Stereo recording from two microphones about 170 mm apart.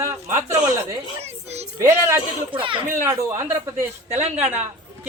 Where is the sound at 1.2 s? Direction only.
40° right (ahead or behind).